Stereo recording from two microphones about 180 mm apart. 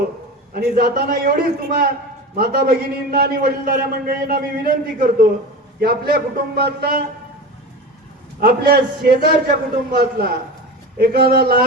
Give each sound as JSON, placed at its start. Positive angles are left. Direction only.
{"t": 0.5, "sound": "a man's voice", "side_deg": -55}
{"t": 8.4, "sound": "a man's voice", "side_deg": -55}